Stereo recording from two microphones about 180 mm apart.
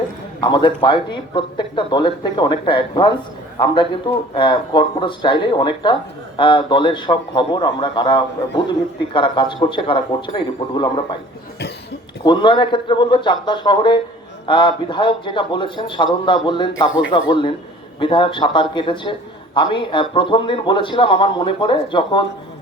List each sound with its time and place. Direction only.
0.4 s speech: 25° left (ahead or behind)
12.2 s speech: 25° left (ahead or behind)